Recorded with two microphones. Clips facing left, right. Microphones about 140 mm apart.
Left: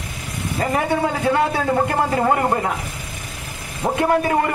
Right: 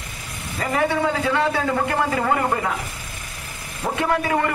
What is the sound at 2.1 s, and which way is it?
Speech, 35° left (ahead or behind).